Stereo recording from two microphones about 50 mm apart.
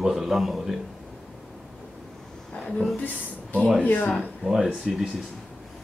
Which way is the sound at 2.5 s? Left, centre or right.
Left.